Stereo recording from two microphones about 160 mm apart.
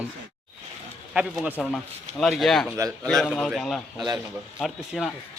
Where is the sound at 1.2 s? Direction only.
5° right (ahead or behind).